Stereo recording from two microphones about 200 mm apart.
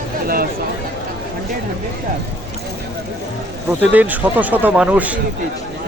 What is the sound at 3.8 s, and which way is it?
Speech, 10° right (ahead or behind).